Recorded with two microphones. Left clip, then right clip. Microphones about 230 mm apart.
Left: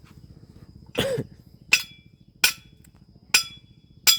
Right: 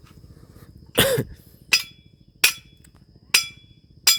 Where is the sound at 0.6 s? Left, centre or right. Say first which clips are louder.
Right 7 dB; right.